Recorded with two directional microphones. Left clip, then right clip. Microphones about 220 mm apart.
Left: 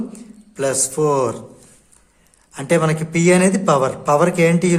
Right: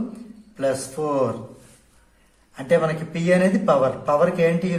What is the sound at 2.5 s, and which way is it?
A woman's voice, 45° left (ahead or behind).